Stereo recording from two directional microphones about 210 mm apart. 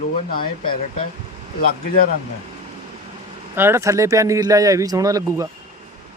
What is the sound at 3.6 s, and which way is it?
Speech, 10° right (ahead or behind).